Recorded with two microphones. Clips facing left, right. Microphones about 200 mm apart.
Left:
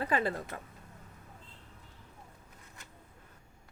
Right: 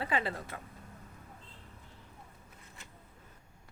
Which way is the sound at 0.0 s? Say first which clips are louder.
Left 3 dB; 45° left (ahead or behind).